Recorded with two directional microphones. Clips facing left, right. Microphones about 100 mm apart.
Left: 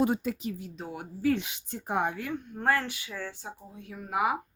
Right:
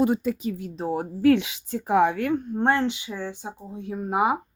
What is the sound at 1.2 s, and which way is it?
A woman's voice, 80° right.